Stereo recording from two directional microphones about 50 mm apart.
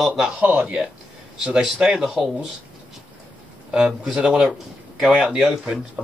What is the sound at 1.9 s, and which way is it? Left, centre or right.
Speech, centre.